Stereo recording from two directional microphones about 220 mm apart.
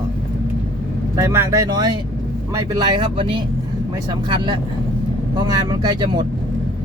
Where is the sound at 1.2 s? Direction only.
15° right (ahead or behind).